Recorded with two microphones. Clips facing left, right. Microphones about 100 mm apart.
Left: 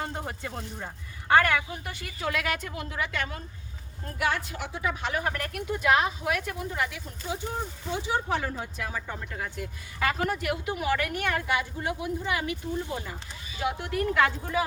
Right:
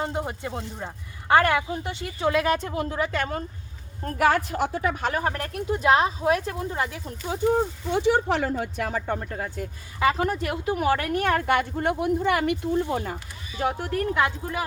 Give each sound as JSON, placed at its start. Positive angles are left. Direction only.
{"t": 0.0, "sound": "speech", "side_deg": -20}
{"t": 5.2, "sound": "speech", "side_deg": -35}
{"t": 7.9, "sound": "speech", "side_deg": -70}
{"t": 9.3, "sound": "speech", "side_deg": -40}
{"t": 10.0, "sound": "speech", "side_deg": -25}
{"t": 13.6, "sound": "speech", "side_deg": -40}
{"t": 14.1, "sound": "speech", "side_deg": -15}